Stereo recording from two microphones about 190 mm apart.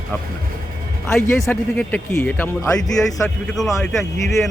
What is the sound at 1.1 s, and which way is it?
A man's voice, 5° left (ahead or behind).